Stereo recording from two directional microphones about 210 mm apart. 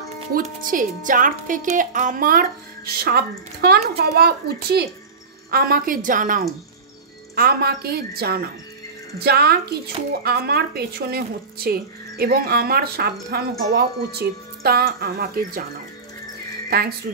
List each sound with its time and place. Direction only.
0.3 s a woman's voice: 40° right (ahead or behind)